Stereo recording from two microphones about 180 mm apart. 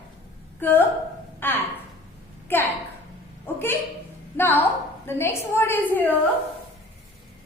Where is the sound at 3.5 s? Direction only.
10° left (ahead or behind).